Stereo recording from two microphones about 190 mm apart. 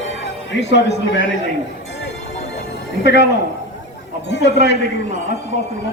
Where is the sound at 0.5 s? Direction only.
75° left (ahead or behind).